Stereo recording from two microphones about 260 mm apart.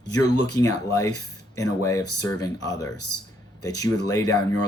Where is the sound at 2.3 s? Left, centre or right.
Centre.